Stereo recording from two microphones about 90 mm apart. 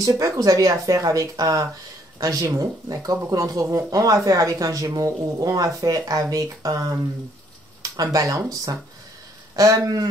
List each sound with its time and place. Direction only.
0.2 s speech: 40° right (ahead or behind)